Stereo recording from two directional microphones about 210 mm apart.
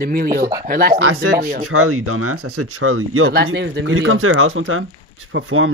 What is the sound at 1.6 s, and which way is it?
Speech, 90° right.